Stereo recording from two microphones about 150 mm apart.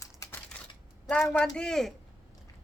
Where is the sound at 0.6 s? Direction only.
10° left (ahead or behind).